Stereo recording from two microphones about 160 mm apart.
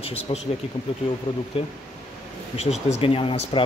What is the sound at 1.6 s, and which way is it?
Speech, 35° left (ahead or behind).